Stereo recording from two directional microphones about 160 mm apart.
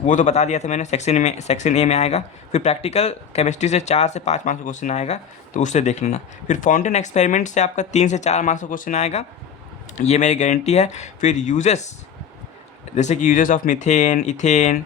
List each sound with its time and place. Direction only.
0.0 s speech: 50° left (ahead or behind)
13.0 s speech: 50° left (ahead or behind)